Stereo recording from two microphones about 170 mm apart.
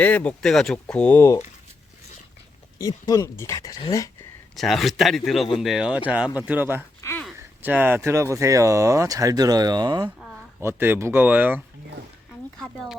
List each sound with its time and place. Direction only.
0.0 s speech: 10° left (ahead or behind)
2.7 s speech: 20° left (ahead or behind)
4.5 s speech: centre (ahead or behind)
7.0 s a sound: 15° left (ahead or behind)
7.3 s speech: 10° right (ahead or behind)
10.2 s speech: 10° right (ahead or behind)
12.5 s speech: centre (ahead or behind)